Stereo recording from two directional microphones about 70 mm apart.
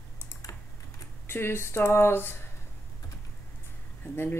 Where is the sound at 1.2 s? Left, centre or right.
Left.